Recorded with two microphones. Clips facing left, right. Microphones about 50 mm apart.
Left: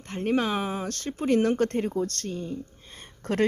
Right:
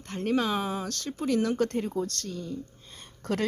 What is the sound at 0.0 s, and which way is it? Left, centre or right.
Speech, left.